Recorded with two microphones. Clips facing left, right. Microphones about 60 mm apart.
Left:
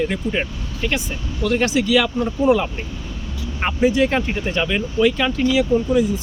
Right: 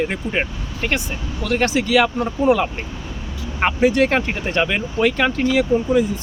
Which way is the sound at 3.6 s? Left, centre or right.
Right.